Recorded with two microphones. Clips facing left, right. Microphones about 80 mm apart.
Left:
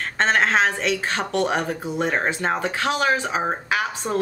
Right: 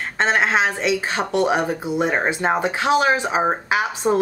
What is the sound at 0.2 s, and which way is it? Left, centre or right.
A woman's voice, centre.